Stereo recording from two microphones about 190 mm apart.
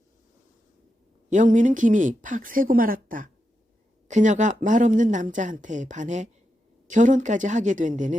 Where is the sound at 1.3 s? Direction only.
40° right (ahead or behind).